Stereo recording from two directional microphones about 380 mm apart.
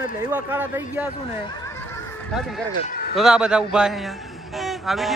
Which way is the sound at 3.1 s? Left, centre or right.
Centre.